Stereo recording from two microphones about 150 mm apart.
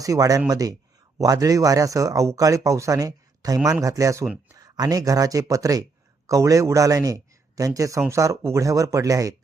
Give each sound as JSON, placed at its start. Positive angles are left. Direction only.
{"t": 0.0, "sound": "speech", "side_deg": -25}